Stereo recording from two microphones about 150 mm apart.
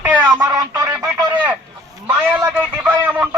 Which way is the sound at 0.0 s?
25° right (ahead or behind).